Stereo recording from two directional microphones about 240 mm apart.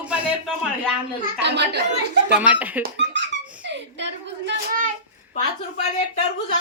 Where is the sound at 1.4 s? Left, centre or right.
Right.